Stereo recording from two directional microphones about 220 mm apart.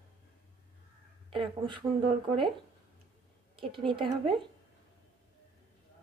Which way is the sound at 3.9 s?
25° right (ahead or behind).